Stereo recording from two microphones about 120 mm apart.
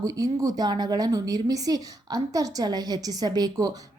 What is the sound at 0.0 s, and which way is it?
A woman's voice, 30° right (ahead or behind).